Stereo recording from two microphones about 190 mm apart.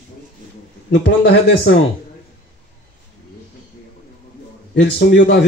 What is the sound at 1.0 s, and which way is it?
Speech, 75° left (ahead or behind).